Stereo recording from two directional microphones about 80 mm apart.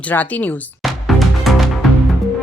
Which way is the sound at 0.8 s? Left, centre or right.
Centre.